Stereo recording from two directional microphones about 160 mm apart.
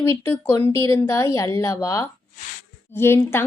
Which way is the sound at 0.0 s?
15° left (ahead or behind).